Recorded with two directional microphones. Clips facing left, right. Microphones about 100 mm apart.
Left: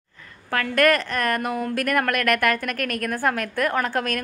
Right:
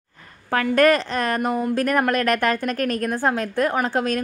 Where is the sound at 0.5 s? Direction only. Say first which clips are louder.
Right 3 dB; 25° right (ahead or behind).